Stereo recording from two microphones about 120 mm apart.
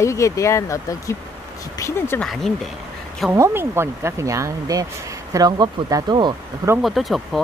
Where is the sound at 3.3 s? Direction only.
20° right (ahead or behind); by 6.3 s 40° right (ahead or behind).